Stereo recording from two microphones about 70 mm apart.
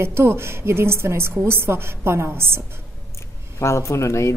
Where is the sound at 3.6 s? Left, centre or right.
Left.